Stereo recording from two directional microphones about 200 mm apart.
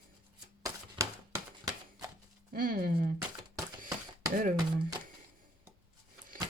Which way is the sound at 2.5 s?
45° right (ahead or behind).